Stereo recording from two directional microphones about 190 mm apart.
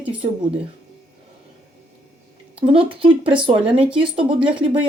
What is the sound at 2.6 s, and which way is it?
Speech, 30° right (ahead or behind).